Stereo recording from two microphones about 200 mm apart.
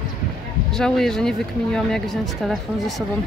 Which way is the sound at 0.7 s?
Centre (ahead or behind).